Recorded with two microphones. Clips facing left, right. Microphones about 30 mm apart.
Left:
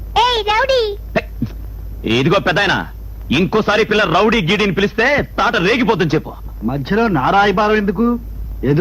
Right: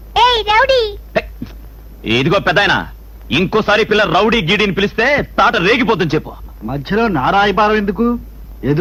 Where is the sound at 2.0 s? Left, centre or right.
Centre.